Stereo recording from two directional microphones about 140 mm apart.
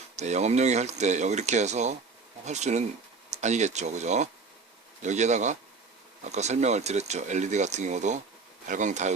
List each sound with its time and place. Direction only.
0.2 s speech: 55° right (ahead or behind)